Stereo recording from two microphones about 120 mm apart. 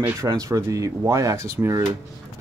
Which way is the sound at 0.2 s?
30° right (ahead or behind).